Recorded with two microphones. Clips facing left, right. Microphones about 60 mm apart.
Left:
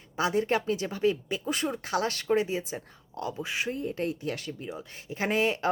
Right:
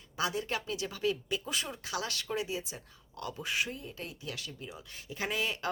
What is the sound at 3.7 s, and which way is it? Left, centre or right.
Speech, left.